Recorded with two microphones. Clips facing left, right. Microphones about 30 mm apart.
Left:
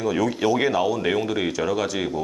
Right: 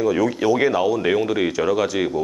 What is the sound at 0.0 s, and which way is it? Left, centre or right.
Speech, centre.